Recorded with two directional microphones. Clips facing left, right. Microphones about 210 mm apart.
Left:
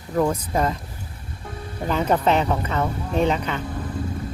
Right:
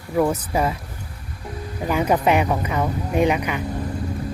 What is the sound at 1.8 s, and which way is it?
Speech, 10° right (ahead or behind).